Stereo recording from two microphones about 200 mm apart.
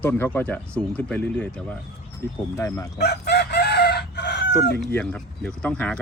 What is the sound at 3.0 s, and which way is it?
Chicken, 55° left (ahead or behind).